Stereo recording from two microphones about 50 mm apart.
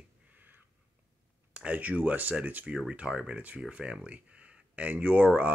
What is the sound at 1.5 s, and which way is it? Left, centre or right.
Speech, right.